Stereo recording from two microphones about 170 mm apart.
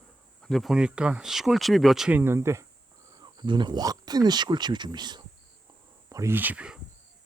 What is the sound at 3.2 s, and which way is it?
Speech, 25° right (ahead or behind).